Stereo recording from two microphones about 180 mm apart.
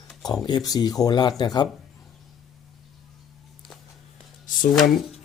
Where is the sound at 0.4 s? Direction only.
20° left (ahead or behind).